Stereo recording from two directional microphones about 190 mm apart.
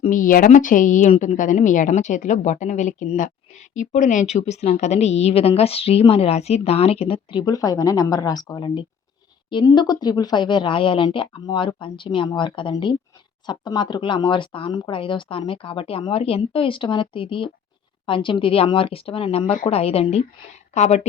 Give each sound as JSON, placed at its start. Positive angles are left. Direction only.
{"t": 0.0, "sound": "a woman's voice", "side_deg": 45}